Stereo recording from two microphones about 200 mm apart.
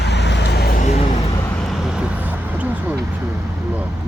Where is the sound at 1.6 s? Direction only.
Centre (ahead or behind).